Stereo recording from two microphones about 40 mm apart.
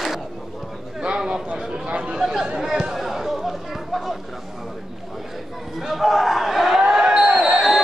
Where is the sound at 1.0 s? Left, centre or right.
Right.